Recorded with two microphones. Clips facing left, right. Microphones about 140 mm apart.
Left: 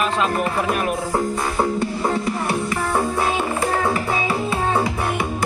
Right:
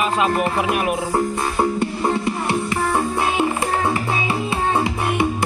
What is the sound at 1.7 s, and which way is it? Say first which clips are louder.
Music: right 1 dB; 20° right (ahead or behind).